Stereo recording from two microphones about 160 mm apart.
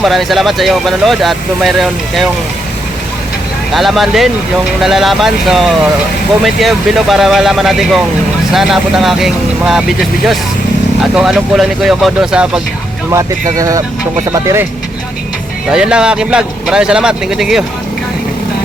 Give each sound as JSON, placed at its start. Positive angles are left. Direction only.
{"t": 0.0, "sound": "speech", "side_deg": 0}
{"t": 3.7, "sound": "speech", "side_deg": 0}
{"t": 13.6, "sound": "speech", "side_deg": -20}
{"t": 15.7, "sound": "speech", "side_deg": -5}